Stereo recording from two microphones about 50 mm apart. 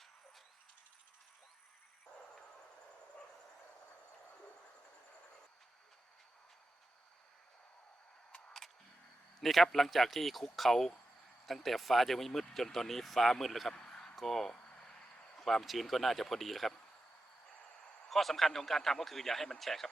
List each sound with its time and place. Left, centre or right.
9.4 s speech: centre
13.7 s a sound: centre
14.2 s vehicle: centre
15.4 s speech: centre
18.1 s speech: centre